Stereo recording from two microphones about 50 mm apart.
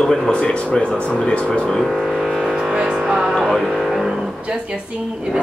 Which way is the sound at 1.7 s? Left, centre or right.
Centre.